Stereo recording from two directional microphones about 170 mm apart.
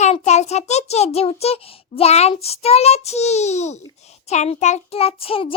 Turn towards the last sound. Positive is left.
turn(degrees=35)  # may be behind; listen again after turning